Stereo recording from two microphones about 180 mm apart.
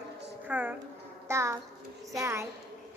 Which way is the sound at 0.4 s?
10° right (ahead or behind).